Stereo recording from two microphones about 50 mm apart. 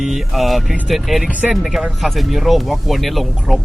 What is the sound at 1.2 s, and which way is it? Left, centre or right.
Speech, right.